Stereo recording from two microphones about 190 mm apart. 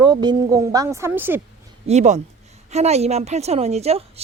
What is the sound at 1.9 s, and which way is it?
A woman's voice, 35° right (ahead or behind).